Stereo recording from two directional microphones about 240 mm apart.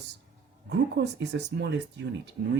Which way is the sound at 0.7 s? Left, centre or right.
Right.